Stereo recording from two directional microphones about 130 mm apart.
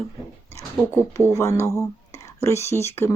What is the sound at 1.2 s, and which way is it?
Speech, 20° left (ahead or behind).